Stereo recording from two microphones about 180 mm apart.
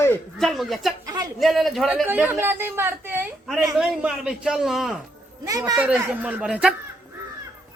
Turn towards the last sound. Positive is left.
turn(degrees=-5)  # may be behind; listen again after turning